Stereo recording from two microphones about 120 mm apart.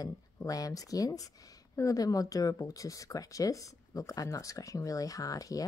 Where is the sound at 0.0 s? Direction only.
30° left (ahead or behind).